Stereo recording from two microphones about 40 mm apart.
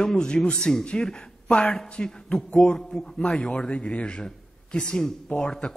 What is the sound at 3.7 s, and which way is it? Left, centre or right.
A man's voice, left.